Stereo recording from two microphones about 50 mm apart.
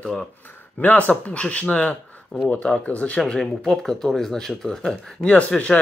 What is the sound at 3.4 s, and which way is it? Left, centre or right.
Speech, centre.